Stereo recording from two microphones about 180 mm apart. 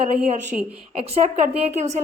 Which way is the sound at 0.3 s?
40° right (ahead or behind).